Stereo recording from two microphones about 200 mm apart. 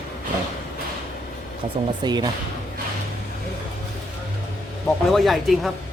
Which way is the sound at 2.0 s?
20° right (ahead or behind).